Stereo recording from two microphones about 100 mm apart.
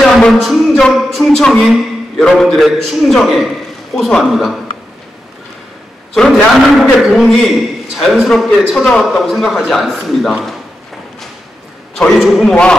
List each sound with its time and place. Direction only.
0.0 s a sound: 5° left (ahead or behind)
0.9 s a man's voice: centre (ahead or behind)
6.1 s a man's voice: 5° left (ahead or behind)
12.0 s a man's voice: centre (ahead or behind)